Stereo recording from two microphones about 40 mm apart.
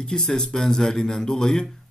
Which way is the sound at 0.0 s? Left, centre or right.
Centre.